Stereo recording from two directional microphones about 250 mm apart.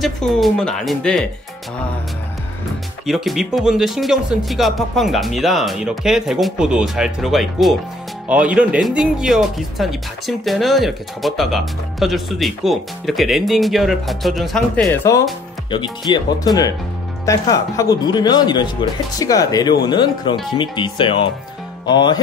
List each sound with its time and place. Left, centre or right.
0.0 s speech: centre
3.1 s speech: centre
16.1 s speech: centre